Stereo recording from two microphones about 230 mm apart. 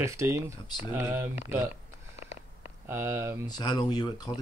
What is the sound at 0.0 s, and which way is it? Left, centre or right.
Speech, centre.